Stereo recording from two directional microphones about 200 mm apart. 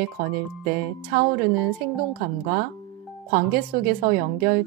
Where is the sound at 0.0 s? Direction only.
45° right (ahead or behind).